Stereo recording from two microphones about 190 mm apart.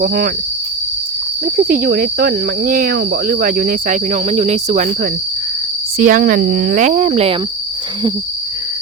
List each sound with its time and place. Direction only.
0.0 s speech: 45° right (ahead or behind)
1.5 s speech: 50° right (ahead or behind)
6.0 s speech: 45° right (ahead or behind)